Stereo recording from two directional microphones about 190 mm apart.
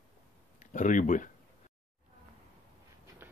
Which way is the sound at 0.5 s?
40° left (ahead or behind).